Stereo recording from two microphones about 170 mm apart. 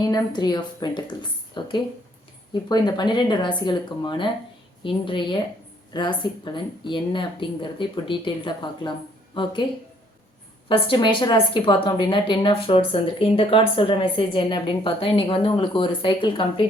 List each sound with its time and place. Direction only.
0.0 s a woman's voice: 25° left (ahead or behind)
10.7 s a woman's voice: 30° left (ahead or behind)